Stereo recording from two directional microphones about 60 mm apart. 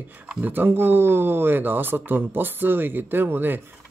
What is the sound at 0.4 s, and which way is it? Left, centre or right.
Speech, right.